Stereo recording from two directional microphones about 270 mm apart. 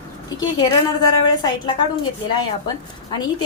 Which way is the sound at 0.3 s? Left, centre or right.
Centre.